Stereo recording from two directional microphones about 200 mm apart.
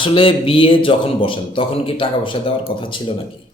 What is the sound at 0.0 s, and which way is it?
Speech, 25° left (ahead or behind).